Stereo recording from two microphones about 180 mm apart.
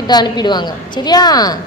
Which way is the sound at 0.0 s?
25° left (ahead or behind).